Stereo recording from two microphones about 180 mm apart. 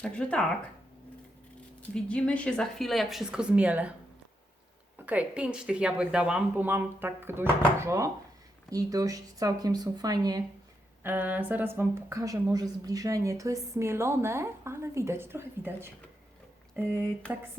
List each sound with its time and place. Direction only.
0.0 s speech: 5° left (ahead or behind)
1.9 s speech: 5° left (ahead or behind)
5.0 s a woman's voice: 5° right (ahead or behind)
11.0 s a woman's voice: 10° right (ahead or behind)